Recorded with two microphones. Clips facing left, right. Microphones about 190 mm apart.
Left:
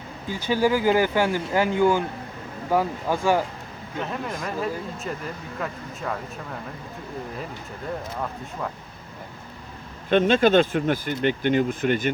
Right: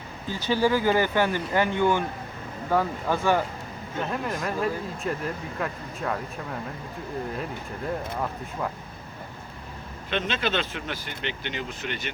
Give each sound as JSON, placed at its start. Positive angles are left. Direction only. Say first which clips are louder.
{"t": 0.3, "sound": "speech", "louder": "left 1 dB", "side_deg": 10}
{"t": 4.1, "sound": "speech", "louder": "right 2 dB", "side_deg": 0}
{"t": 10.1, "sound": "speech", "louder": "left 10 dB", "side_deg": 45}